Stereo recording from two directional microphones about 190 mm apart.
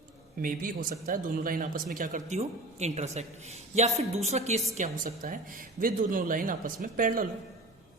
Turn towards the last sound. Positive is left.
turn(degrees=-45)  # may be behind; listen again after turning